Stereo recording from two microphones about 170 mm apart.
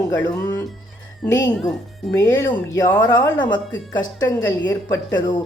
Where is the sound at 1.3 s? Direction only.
20° left (ahead or behind).